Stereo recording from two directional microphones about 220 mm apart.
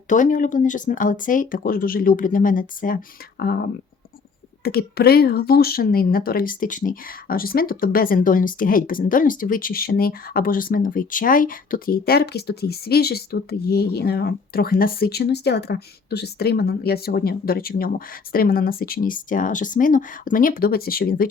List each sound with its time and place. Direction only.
0.1 s speech: 35° left (ahead or behind)
4.6 s speech: 45° left (ahead or behind)